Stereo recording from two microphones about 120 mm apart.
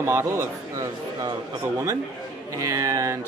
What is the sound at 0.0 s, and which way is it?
Speech, 25° right (ahead or behind).